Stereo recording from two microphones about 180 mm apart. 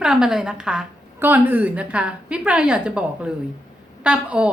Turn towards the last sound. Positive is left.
turn(degrees=-5)  # may be behind; listen again after turning